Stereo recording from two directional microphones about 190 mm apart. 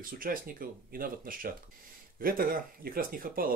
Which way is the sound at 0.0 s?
45° right (ahead or behind).